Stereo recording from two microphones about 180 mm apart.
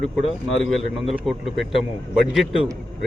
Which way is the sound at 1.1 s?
Centre (ahead or behind).